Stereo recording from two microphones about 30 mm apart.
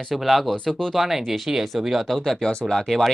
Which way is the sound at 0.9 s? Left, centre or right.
Centre.